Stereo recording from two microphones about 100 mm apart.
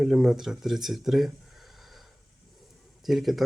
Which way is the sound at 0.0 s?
5° right (ahead or behind).